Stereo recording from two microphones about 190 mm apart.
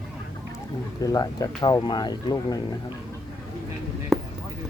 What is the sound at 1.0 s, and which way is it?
Speech, 20° left (ahead or behind).